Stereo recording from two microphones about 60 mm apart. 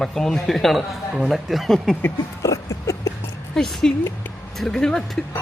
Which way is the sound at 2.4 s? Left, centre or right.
Left.